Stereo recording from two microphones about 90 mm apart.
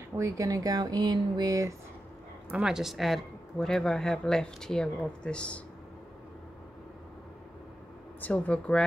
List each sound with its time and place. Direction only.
0.2 s speech: 40° right (ahead or behind)
2.5 s speech: 5° right (ahead or behind); by 5.6 s 10° left (ahead or behind)
8.2 s speech: 15° left (ahead or behind)